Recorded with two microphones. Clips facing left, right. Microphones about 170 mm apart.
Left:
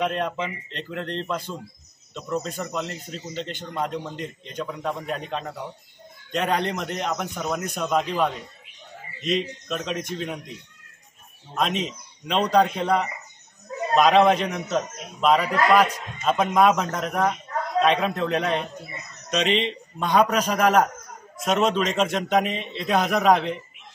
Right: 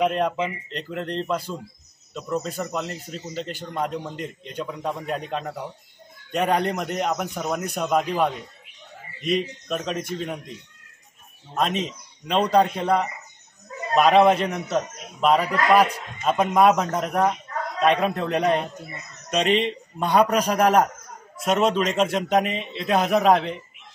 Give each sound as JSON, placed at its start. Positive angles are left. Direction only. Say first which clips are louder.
{"t": 0.0, "sound": "a man's voice", "louder": "right 3 dB", "side_deg": -5}
{"t": 11.5, "sound": "a man's voice", "louder": "right 1 dB", "side_deg": 0}
{"t": 19.4, "sound": "speech", "louder": "right 2 dB", "side_deg": -45}
{"t": 20.0, "sound": "a man's voice", "louder": "right 1 dB", "side_deg": -10}